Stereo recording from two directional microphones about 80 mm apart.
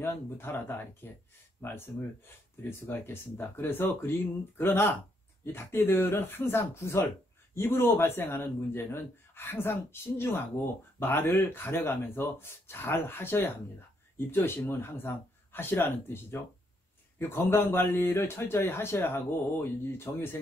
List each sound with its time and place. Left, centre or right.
0.0 s speech: left